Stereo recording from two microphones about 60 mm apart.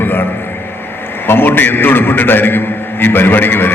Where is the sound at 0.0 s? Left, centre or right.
Left.